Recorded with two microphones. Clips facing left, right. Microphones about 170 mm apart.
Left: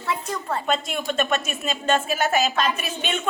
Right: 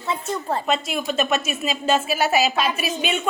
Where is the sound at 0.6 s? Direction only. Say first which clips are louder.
Right 1 dB; 5° right (ahead or behind).